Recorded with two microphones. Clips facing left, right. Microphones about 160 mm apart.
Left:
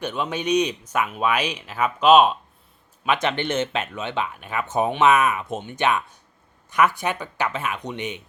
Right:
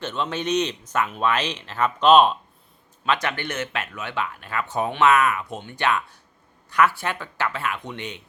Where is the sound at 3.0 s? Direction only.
20° left (ahead or behind).